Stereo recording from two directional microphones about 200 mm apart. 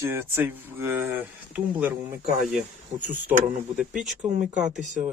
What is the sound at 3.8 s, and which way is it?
Speech, 5° right (ahead or behind).